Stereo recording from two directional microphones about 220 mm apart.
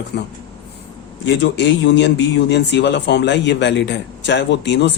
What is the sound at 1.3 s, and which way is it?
Speech, 50° left (ahead or behind).